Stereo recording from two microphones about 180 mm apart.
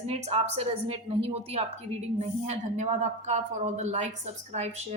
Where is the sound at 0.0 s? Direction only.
35° right (ahead or behind).